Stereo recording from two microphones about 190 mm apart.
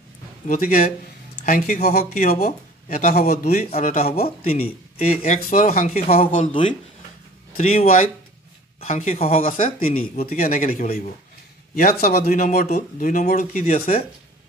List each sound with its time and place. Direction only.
0.5 s speech: 45° left (ahead or behind)
2.1 s speech: 35° left (ahead or behind)
3.7 s speech: 40° left (ahead or behind)
5.9 s speech: 30° left (ahead or behind)
9.4 s speech: 45° left (ahead or behind)
9.9 s speech: 30° left (ahead or behind)
10.3 s speech: 45° left (ahead or behind)
11.7 s speech: 50° left (ahead or behind); by 14.0 s 35° left (ahead or behind)